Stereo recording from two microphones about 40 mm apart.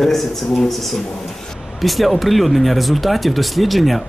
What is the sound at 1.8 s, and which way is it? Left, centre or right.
Speech, centre.